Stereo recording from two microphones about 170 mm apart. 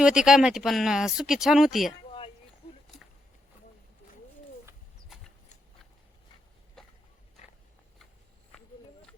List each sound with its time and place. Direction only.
0.0 s speech: 5° right (ahead or behind)